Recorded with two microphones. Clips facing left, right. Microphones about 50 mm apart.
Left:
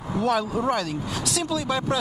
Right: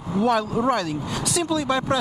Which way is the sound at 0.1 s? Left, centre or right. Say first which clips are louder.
Right 2 dB; centre.